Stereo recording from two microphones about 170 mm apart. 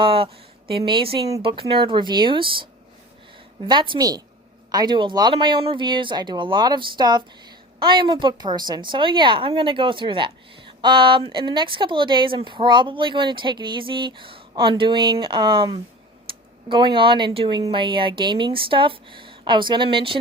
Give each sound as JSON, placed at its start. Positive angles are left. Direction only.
{"t": 0.0, "sound": "speech", "side_deg": -30}
{"t": 3.7, "sound": "speech", "side_deg": -25}